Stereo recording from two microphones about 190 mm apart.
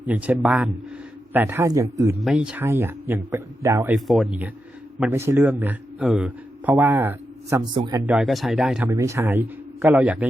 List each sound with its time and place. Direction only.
0.0 s speech: 5° right (ahead or behind)
2.2 s speech: 5° right (ahead or behind)
3.9 s speech: centre (ahead or behind)
7.6 s speech: 25° right (ahead or behind)
8.0 s speech: 5° right (ahead or behind)
8.9 s speech: 15° right (ahead or behind)